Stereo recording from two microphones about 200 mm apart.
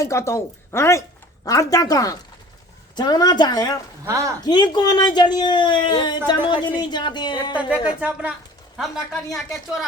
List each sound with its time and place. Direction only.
0.0 s speech: 15° left (ahead or behind)
4.0 s speech: 15° right (ahead or behind)
4.4 s speech: 20° left (ahead or behind)
7.5 s a woman's voice: 5° right (ahead or behind)